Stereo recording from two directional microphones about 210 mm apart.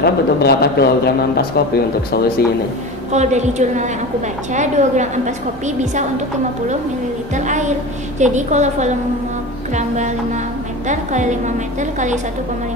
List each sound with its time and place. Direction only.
0.0 s speech: 50° left (ahead or behind)
3.1 s a woman's voice: 35° right (ahead or behind)
7.3 s a woman's voice: 35° right (ahead or behind)
10.9 s a woman's voice: 35° right (ahead or behind)